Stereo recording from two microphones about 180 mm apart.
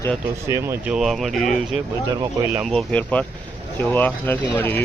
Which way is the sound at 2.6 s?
Centre (ahead or behind).